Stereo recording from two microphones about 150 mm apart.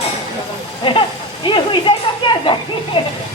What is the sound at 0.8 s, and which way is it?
A woman's voice, 35° left (ahead or behind).